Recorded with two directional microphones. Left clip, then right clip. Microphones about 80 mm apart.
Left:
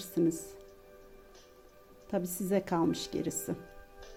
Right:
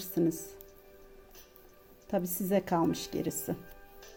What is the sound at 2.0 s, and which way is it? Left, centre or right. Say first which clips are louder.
Speech: right 1 dB; right.